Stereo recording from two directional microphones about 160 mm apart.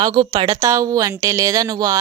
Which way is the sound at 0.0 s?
30° right (ahead or behind).